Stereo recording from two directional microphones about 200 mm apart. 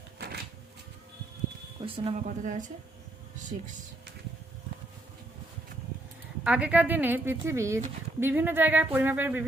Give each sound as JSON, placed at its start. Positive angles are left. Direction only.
{"t": 1.8, "sound": "speech", "side_deg": -25}
{"t": 2.1, "sound": "a woman's voice", "side_deg": -40}
{"t": 6.4, "sound": "speech", "side_deg": -5}